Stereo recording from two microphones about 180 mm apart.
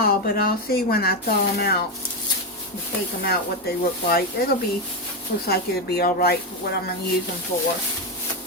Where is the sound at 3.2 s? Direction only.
60° left (ahead or behind).